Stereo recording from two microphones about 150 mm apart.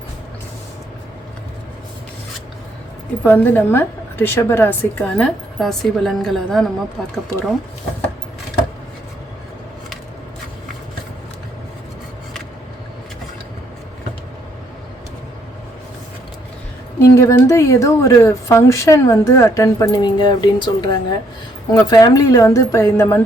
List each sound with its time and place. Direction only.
3.2 s a woman's voice: 15° left (ahead or behind)
17.0 s speech: 20° left (ahead or behind)